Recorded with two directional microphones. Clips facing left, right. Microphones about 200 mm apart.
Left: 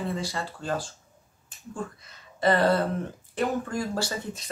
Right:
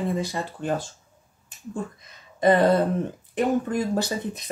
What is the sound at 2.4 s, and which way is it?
Speech, 15° right (ahead or behind).